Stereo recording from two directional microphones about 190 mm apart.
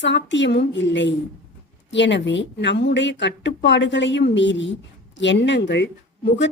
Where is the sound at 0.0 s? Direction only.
65° left (ahead or behind).